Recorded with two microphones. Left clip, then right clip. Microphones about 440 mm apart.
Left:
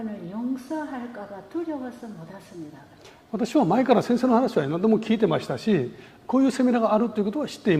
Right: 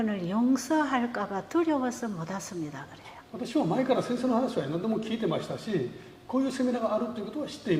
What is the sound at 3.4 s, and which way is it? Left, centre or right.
Speech, left.